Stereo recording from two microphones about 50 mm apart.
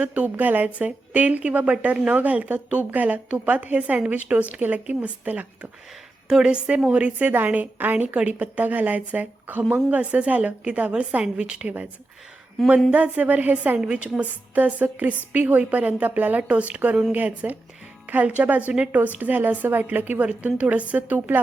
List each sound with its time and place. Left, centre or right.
0.0 s a woman's voice: right
6.4 s a woman's voice: centre
12.9 s a woman's voice: right
13.8 s a woman's voice: right
16.4 s a woman's voice: right
17.1 s a woman's voice: right